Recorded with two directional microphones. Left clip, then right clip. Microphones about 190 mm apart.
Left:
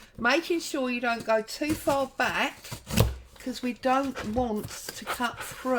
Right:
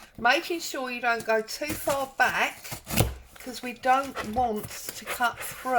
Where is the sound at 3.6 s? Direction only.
40° left (ahead or behind).